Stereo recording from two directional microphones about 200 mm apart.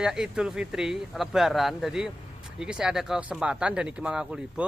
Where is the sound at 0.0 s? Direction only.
5° right (ahead or behind).